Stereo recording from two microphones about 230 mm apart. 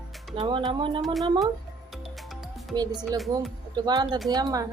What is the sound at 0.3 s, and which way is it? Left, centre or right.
Speech, right.